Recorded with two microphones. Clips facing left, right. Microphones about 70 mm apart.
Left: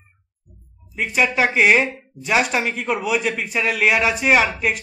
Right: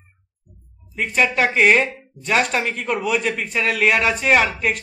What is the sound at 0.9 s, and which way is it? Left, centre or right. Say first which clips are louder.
Speech: even; centre.